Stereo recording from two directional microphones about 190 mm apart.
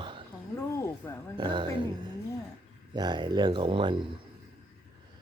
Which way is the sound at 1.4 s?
25° right (ahead or behind).